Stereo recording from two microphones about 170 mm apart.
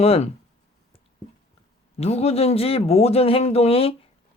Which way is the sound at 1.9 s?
40° left (ahead or behind).